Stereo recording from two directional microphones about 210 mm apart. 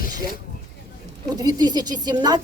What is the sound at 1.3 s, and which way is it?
A woman's voice, 20° right (ahead or behind).